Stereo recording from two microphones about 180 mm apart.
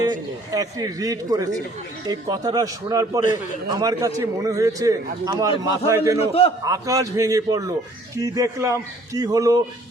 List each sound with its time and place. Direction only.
0.0 s a man's voice: 20° right (ahead or behind)